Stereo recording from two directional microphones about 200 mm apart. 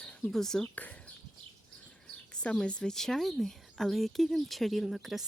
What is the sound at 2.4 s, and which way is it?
A woman's voice, 5° left (ahead or behind).